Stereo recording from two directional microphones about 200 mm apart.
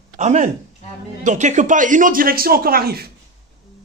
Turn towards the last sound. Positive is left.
turn(degrees=-50)  # may be behind; listen again after turning